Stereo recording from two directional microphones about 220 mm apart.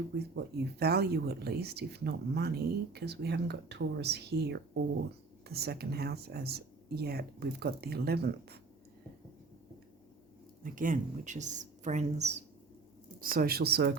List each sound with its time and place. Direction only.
0.3 s speech: 45° right (ahead or behind)
10.6 s speech: 35° right (ahead or behind)